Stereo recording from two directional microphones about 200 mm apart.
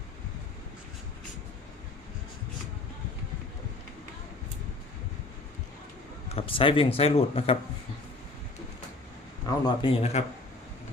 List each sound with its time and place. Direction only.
6.2 s speech: 30° left (ahead or behind)
9.5 s speech: 25° left (ahead or behind)